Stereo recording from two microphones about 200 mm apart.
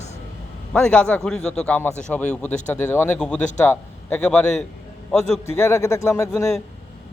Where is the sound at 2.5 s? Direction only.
35° left (ahead or behind).